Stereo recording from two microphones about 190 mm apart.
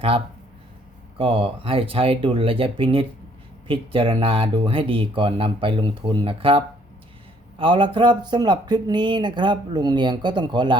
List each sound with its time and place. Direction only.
1.2 s speech: 30° right (ahead or behind)
7.6 s speech: 25° right (ahead or behind)